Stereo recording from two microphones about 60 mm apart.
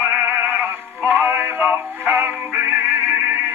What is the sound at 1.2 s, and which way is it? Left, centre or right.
Synthetic singing, right.